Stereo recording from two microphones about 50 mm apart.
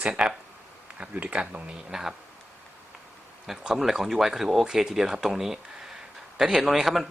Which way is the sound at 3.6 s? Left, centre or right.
Centre.